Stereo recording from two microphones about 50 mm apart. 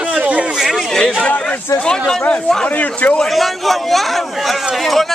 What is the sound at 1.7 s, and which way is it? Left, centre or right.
Speech, left.